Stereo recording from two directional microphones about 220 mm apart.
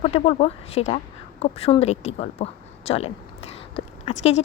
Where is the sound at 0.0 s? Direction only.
30° left (ahead or behind).